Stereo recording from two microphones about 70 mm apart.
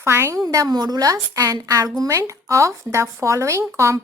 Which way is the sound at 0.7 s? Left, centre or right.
Right.